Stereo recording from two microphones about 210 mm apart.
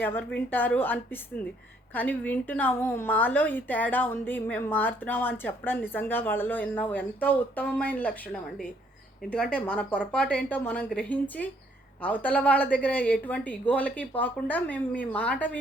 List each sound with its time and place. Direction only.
0.0 s a woman's voice: 10° left (ahead or behind)